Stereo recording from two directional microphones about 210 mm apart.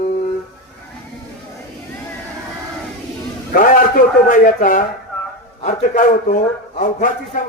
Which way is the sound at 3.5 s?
40° left (ahead or behind).